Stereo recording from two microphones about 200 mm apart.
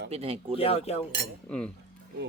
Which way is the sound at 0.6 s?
30° left (ahead or behind).